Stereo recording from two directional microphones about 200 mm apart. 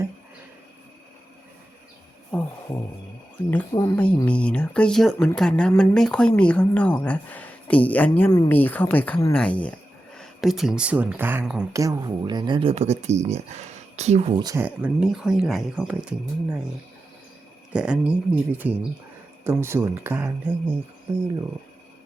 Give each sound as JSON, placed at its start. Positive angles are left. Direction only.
{"t": 2.3, "sound": "speech", "side_deg": 15}
{"t": 14.3, "sound": "speech", "side_deg": -20}
{"t": 14.6, "sound": "speech", "side_deg": -5}
{"t": 17.7, "sound": "speech", "side_deg": -5}